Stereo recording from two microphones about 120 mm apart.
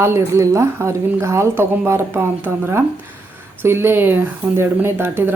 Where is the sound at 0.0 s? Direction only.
25° right (ahead or behind).